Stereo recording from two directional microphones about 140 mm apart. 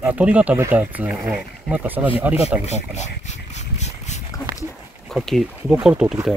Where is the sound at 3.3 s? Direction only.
55° left (ahead or behind).